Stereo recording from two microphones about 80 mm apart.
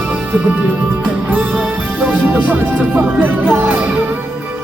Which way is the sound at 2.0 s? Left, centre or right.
Right.